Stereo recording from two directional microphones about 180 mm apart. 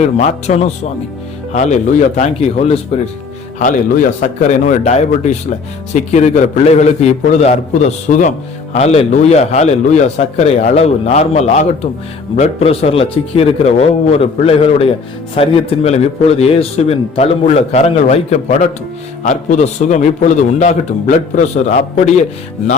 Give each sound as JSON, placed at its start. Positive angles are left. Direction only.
{"t": 0.2, "sound": "a man's voice", "side_deg": 40}